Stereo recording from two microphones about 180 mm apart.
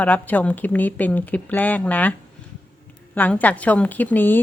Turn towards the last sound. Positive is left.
turn(degrees=10)  # may be behind; listen again after turning